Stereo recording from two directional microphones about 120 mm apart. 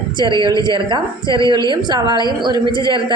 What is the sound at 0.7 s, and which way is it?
A woman's voice, 40° right (ahead or behind).